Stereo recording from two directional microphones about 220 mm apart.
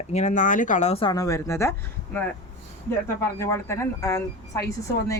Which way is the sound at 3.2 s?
10° left (ahead or behind).